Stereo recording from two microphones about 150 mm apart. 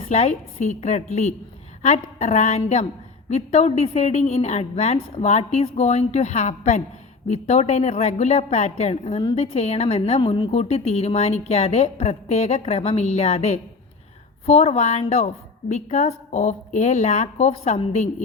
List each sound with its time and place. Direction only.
0.0 s a woman's voice: 45° left (ahead or behind)